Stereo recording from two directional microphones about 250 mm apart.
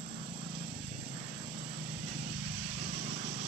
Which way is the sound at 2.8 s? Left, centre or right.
Right.